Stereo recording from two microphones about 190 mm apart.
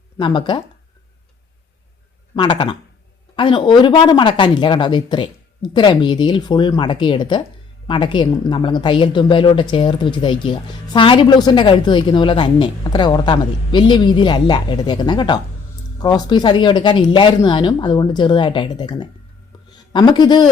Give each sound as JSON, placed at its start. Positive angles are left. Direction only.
{"t": 0.2, "sound": "speech", "side_deg": 25}
{"t": 2.3, "sound": "speech", "side_deg": 25}